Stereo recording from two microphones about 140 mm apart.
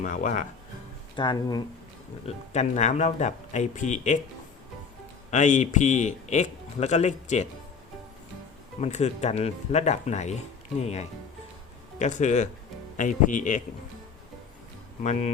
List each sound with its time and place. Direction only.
0.0 s a man's voice: 65° left (ahead or behind)
1.1 s speech: 35° left (ahead or behind)
2.2 s a man's voice: 55° left (ahead or behind)
5.3 s a man's voice: 60° left (ahead or behind)
8.8 s a man's voice: 50° left (ahead or behind)
15.0 s speech: 50° left (ahead or behind)